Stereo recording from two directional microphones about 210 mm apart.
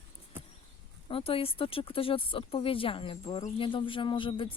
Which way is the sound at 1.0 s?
25° left (ahead or behind).